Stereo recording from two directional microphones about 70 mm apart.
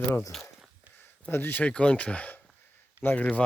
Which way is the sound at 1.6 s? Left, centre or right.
Centre.